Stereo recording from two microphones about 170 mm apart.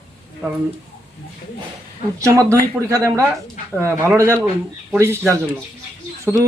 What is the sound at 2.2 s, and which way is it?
A man's voice, 20° right (ahead or behind).